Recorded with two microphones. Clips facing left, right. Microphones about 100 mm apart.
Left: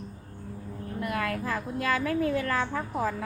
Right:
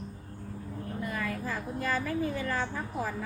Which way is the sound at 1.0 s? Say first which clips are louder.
Left 5 dB; 80° left.